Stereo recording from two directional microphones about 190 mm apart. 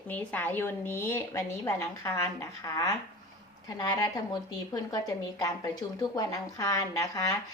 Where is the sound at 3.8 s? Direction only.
20° left (ahead or behind).